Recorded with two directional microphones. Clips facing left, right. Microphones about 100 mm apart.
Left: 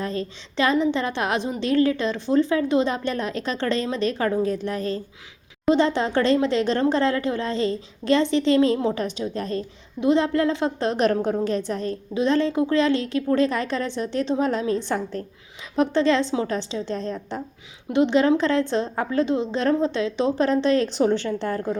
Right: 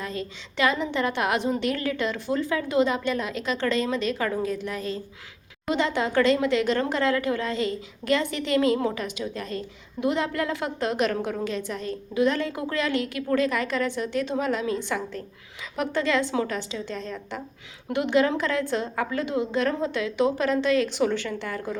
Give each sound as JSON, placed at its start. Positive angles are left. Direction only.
{"t": 0.0, "sound": "a woman's voice", "side_deg": 35}
{"t": 12.1, "sound": "a woman's voice", "side_deg": 25}